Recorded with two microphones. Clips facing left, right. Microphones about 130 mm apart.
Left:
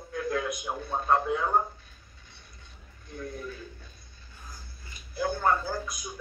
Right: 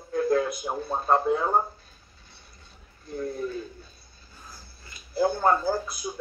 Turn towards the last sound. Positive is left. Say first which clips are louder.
# right 6 dB
turn(degrees=-35)  # may be behind; listen again after turning